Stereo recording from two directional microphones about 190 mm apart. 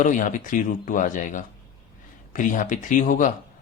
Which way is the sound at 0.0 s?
40° left (ahead or behind).